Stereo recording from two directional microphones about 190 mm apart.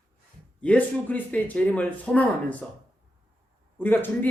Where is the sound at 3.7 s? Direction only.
10° left (ahead or behind).